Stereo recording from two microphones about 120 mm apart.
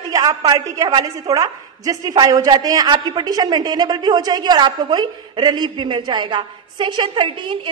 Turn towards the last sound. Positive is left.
turn(degrees=-40)  # may be behind; listen again after turning